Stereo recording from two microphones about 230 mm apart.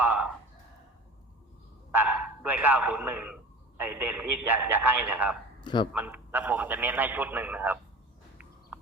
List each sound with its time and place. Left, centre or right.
0.0 s speech: centre
1.9 s a man's voice: centre
5.5 s a man's voice: left
5.9 s a man's voice: centre
8.7 s a sound: centre